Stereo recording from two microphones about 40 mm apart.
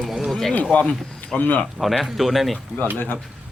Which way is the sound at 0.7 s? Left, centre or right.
Left.